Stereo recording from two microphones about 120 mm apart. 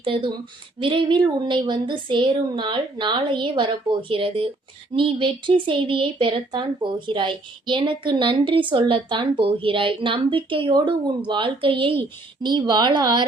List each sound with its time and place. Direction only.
0.0 s a woman's voice: 45° right (ahead or behind)